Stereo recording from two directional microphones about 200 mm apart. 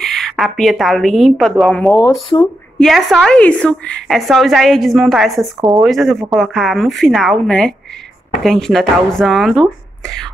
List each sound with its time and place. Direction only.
0.0 s a woman's voice: centre (ahead or behind)
2.3 s speech: 20° left (ahead or behind)
2.8 s a woman's voice: centre (ahead or behind)